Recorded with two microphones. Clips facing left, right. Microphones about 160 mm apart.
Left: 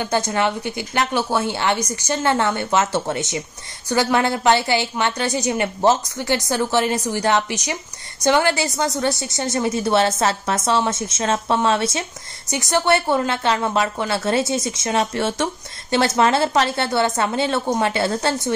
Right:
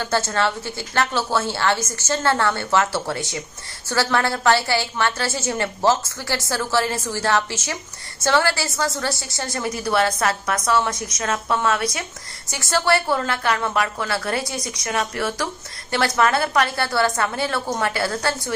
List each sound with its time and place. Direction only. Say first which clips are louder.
0.0 s a woman's voice: left 1 dB; 15° left (ahead or behind)